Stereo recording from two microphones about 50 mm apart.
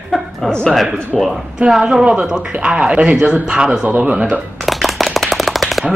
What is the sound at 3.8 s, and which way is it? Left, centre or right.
Speech, right.